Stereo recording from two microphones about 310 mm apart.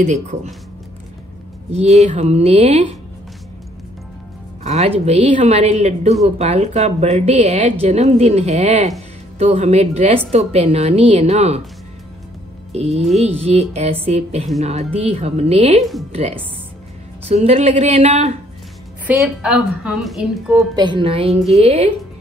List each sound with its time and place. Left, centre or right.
0.0 s a woman's voice: right
1.7 s a woman's voice: right
4.6 s a woman's voice: right
12.7 s a woman's voice: right
19.0 s a woman's voice: centre